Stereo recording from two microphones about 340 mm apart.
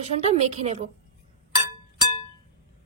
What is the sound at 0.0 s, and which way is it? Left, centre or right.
Speech, centre.